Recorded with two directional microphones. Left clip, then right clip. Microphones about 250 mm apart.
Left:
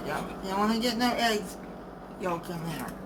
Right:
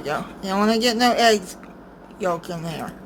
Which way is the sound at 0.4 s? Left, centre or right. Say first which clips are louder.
Right 9 dB; right.